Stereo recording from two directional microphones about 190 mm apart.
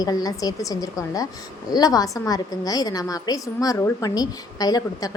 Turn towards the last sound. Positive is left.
turn(degrees=20)  # may be behind; listen again after turning